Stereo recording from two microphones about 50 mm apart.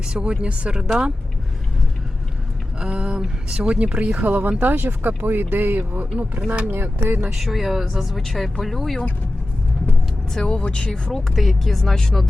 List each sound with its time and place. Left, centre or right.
0.1 s speech: centre
2.8 s speech: centre
3.5 s speech: right
7.3 s speech: centre
10.4 s speech: left
11.1 s speech: centre